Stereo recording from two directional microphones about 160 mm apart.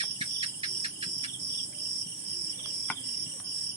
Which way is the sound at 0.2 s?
35° right (ahead or behind).